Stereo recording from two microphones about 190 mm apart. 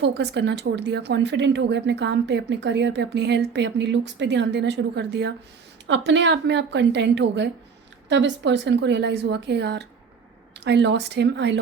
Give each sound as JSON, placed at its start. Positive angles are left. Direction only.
{"t": 0.0, "sound": "a woman's voice", "side_deg": -65}